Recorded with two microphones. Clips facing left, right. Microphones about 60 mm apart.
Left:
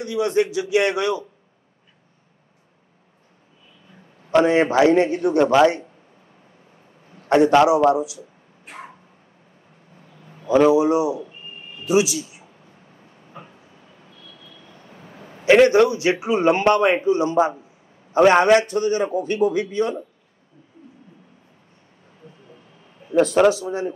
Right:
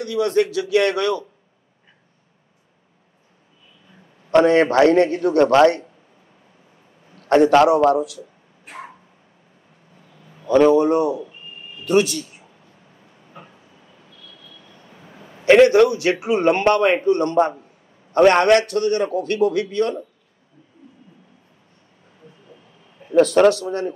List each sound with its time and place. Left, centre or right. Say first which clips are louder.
0.1 s a man's voice: right 1 dB; centre
4.3 s a man's voice: right 2 dB; centre
7.2 s a man's voice: right 1 dB; centre
8.0 s speech: right 2 dB; right
10.4 s a man's voice: right 1 dB; centre
13.3 s vehicle: left 1 dB; centre
14.1 s vehicle: even; left
15.4 s a man's voice: right 2 dB; centre
23.1 s a man's voice: right 2 dB; centre